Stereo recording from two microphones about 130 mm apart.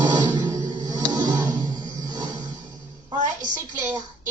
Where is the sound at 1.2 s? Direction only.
75° right (ahead or behind).